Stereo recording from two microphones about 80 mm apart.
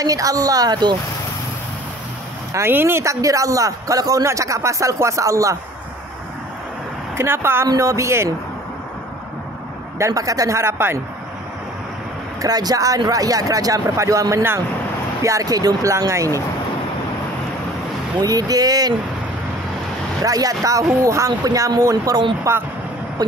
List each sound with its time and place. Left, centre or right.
0.0 s speech: right
2.5 s a man's voice: right
7.2 s speech: right
7.6 s a man's voice: right
9.9 s a man's voice: right
12.4 s speech: right
18.2 s speech: right
20.2 s speech: right
22.5 s a man's voice: right